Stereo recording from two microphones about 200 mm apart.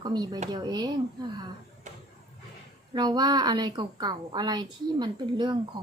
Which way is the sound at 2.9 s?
20° right (ahead or behind).